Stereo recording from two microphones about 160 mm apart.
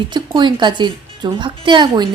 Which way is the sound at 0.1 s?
30° right (ahead or behind).